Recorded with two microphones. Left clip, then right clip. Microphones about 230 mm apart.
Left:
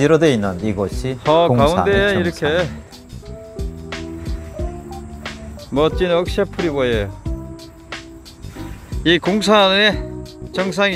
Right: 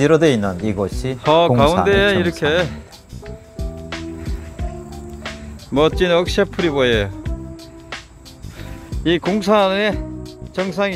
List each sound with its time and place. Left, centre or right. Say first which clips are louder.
0.0 s speech: even; centre
1.3 s speech: even; centre
3.5 s music: right 1 dB; centre
5.8 s speech: right 1 dB; centre
8.9 s speech: left 2 dB; centre